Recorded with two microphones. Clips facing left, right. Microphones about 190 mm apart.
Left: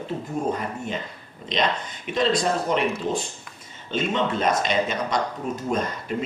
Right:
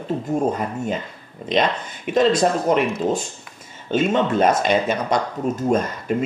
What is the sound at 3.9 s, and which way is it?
Speech, 50° right (ahead or behind).